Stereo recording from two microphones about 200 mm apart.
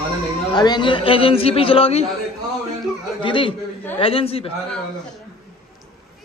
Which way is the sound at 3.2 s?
25° left (ahead or behind).